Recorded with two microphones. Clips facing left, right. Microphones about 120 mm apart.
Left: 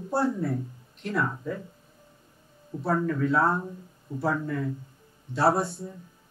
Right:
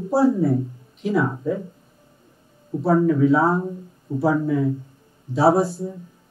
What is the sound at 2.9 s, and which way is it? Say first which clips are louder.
Speech: right 9 dB; 5° right (ahead or behind).